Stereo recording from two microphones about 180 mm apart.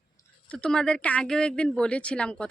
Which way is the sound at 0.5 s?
5° left (ahead or behind).